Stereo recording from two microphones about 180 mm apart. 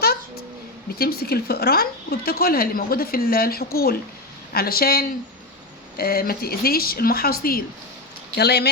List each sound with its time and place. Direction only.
0.9 s speech: 60° left (ahead or behind)